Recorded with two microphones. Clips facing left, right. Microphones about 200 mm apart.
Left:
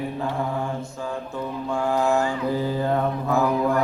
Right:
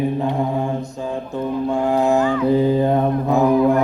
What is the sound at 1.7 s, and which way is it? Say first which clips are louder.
Mantra: right 4 dB; 20° right (ahead or behind).